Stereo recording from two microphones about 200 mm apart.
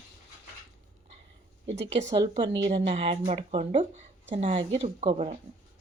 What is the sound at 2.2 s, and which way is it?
Speech, 25° right (ahead or behind).